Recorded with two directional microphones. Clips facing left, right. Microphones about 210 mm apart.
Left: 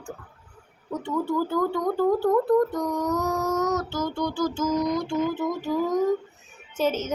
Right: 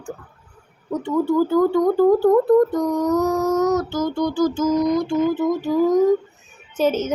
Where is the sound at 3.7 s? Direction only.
15° right (ahead or behind).